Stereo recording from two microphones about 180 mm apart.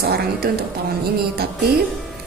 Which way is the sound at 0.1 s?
60° right (ahead or behind).